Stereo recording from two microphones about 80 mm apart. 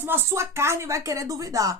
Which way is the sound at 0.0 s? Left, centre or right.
Right.